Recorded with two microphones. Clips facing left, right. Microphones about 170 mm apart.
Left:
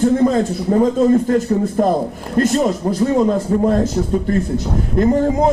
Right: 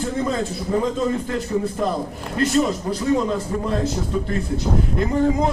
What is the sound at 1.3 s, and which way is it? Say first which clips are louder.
A man's voice: left 7 dB; 45° left (ahead or behind).